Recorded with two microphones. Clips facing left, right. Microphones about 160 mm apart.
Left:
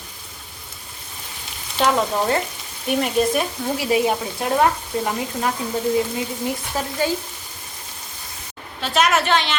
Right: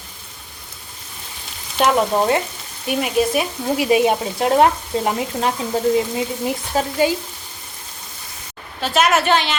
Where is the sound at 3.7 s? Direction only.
20° right (ahead or behind).